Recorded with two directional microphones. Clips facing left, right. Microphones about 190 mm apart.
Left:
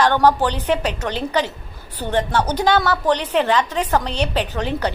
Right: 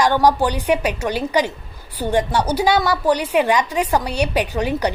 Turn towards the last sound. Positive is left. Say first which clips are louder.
# right 2 dB
turn(degrees=-10)  # may be behind; listen again after turning